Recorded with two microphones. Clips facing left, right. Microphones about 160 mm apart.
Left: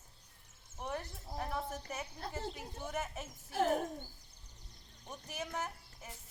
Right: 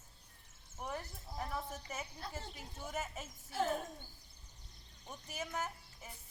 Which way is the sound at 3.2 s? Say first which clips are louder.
Left 4 dB; 55° left (ahead or behind).